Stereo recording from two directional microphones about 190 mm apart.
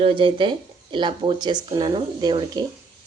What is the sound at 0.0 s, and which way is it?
Speech, 30° right (ahead or behind).